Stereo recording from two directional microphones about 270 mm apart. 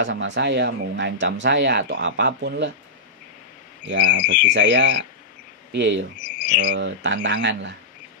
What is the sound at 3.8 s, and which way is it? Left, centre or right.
Speech, right.